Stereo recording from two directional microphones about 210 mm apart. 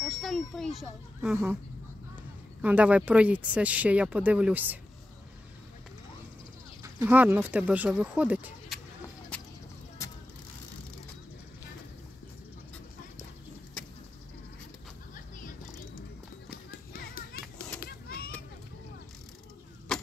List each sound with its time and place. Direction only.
0.0 s a sound: centre (ahead or behind)
0.7 s speech: 5° right (ahead or behind)
2.6 s speech: 5° right (ahead or behind)
6.8 s speech: 10° right (ahead or behind)
10.0 s vehicle: 15° left (ahead or behind)
16.4 s tap: 45° left (ahead or behind)
17.8 s children playing: 45° left (ahead or behind)
19.9 s vehicle: centre (ahead or behind)